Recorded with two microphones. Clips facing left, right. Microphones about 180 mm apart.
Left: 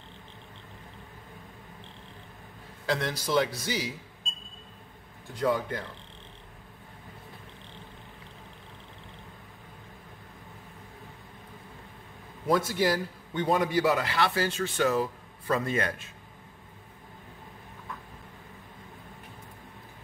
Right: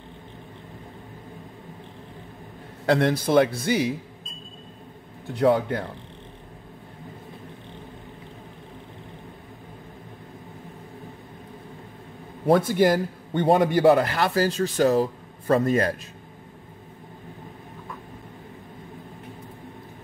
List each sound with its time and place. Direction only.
2.9 s a man's voice: 55° right (ahead or behind)
5.3 s a man's voice: 65° right (ahead or behind)
12.5 s a man's voice: 55° right (ahead or behind); by 16.0 s 40° right (ahead or behind)